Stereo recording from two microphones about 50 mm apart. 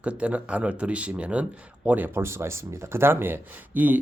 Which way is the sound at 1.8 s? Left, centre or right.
Right.